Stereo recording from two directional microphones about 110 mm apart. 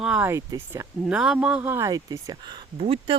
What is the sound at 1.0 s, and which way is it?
Speech, 10° right (ahead or behind).